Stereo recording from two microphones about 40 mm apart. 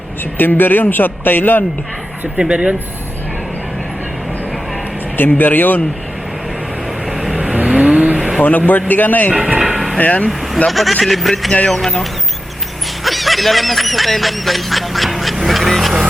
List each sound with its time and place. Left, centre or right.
0.3 s a man's voice: left
2.4 s speech: right
5.1 s speech: left
7.7 s vehicle: right
8.4 s speech: left
9.3 s speech: right
10.0 s speech: left
10.7 s speech: centre
13.1 s a sound: centre
15.4 s vehicle: centre